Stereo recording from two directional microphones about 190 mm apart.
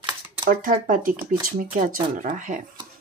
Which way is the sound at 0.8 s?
45° right (ahead or behind).